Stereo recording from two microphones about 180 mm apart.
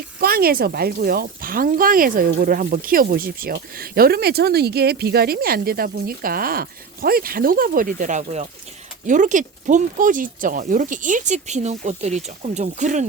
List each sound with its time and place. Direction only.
0.2 s speech: 55° right (ahead or behind)